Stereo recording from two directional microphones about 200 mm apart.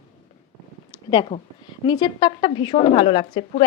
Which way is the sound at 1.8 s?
25° left (ahead or behind).